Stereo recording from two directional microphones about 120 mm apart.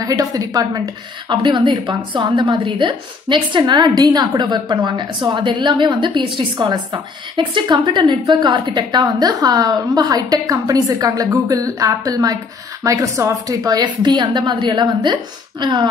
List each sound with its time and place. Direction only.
0.0 s a woman's voice: 30° right (ahead or behind)
1.3 s a woman's voice: 40° right (ahead or behind)